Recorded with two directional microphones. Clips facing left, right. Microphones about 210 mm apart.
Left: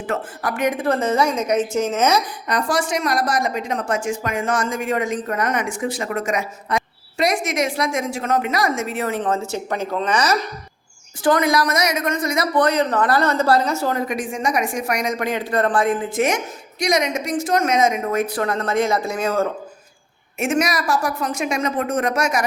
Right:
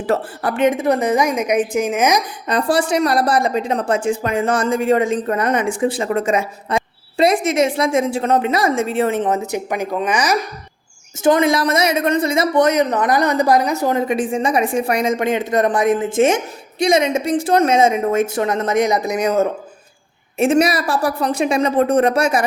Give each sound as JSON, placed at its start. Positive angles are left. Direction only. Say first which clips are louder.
{"t": 0.0, "sound": "speech", "louder": "right 5 dB", "side_deg": -35}
{"t": 0.5, "sound": "a woman's voice", "louder": "right 4 dB", "side_deg": -25}
{"t": 2.5, "sound": "speech", "louder": "right 5 dB", "side_deg": -30}
{"t": 11.2, "sound": "speech", "louder": "right 3 dB", "side_deg": -25}
{"t": 12.6, "sound": "speech", "louder": "right 3 dB", "side_deg": -20}
{"t": 20.4, "sound": "speech", "louder": "right 6 dB", "side_deg": -30}